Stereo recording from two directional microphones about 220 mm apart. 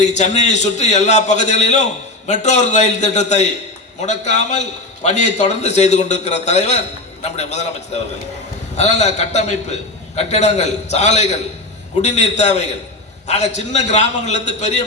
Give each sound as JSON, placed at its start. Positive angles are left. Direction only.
{"t": 0.0, "sound": "a man's voice", "side_deg": 30}